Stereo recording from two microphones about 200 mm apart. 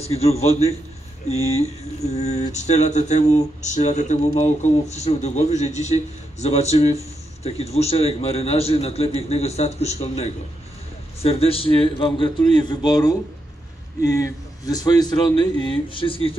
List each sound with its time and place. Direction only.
0.0 s a sound: 30° left (ahead or behind)
11.2 s a man's voice: 30° left (ahead or behind)
14.2 s a man's voice: 20° left (ahead or behind)